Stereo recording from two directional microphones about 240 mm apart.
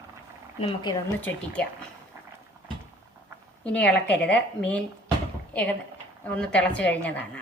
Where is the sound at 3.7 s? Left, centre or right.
Centre.